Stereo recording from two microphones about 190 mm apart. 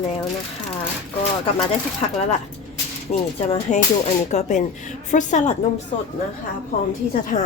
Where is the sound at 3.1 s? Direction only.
30° left (ahead or behind).